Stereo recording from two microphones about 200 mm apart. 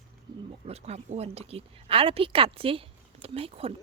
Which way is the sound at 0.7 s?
30° right (ahead or behind).